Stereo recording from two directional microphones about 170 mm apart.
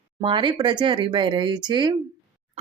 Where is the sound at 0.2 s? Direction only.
30° right (ahead or behind).